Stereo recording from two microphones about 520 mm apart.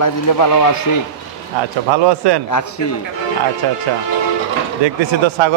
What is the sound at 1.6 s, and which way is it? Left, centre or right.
Speech, right.